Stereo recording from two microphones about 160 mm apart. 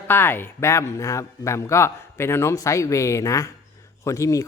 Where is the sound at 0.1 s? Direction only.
15° left (ahead or behind).